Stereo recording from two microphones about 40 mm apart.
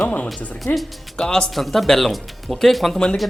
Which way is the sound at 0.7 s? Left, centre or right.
Left.